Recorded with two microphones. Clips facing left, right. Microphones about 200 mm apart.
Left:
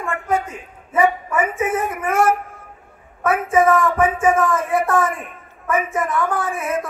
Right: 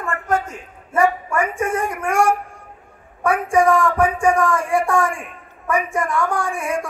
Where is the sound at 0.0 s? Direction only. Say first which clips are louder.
Even; centre (ahead or behind).